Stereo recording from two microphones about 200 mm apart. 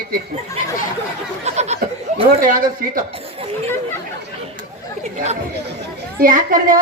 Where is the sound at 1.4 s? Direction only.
35° right (ahead or behind).